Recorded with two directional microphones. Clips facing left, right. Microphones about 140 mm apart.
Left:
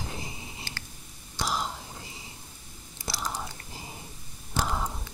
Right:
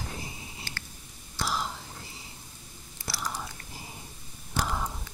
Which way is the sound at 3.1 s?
25° left (ahead or behind).